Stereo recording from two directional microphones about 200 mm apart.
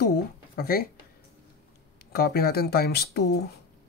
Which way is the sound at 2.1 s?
50° left (ahead or behind).